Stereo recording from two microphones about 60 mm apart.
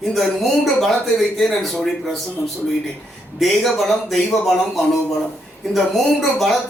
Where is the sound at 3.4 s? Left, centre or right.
Centre.